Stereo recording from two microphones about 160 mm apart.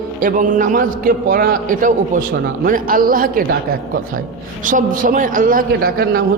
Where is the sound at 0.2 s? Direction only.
55° right (ahead or behind).